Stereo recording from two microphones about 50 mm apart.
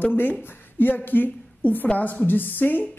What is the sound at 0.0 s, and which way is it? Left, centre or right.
A woman's voice, left.